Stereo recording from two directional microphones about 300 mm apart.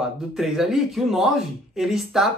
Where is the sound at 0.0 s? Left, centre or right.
Centre.